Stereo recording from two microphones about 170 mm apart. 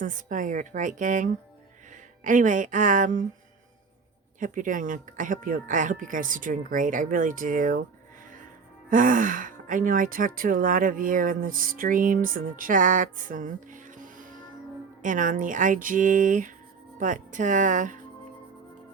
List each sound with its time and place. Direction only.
0.0 s speech: 50° right (ahead or behind)
4.4 s speech: 50° right (ahead or behind)
8.9 s speech: 50° right (ahead or behind)